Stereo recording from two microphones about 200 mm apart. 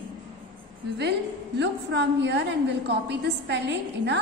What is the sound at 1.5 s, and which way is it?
A woman's voice, 60° right (ahead or behind).